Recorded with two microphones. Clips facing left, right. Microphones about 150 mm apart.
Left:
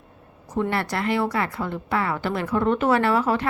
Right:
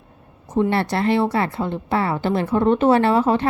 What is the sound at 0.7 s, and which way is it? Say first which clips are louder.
A woman's voice: right 4 dB; 30° right (ahead or behind).